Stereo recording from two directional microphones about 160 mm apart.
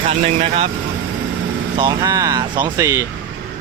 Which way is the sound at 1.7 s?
25° right (ahead or behind).